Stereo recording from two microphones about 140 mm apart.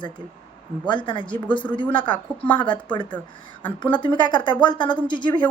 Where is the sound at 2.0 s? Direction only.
10° left (ahead or behind).